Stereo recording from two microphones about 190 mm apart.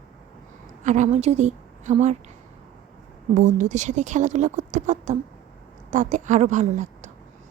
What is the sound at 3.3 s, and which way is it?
A woman's voice, 40° right (ahead or behind).